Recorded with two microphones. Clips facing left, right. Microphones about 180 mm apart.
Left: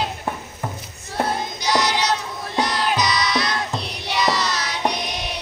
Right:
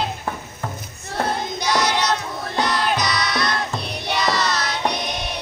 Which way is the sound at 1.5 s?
55° right (ahead or behind).